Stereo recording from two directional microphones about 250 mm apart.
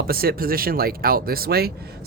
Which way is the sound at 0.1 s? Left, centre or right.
Right.